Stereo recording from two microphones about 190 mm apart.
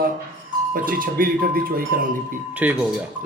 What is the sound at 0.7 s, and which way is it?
Speech, 50° right (ahead or behind).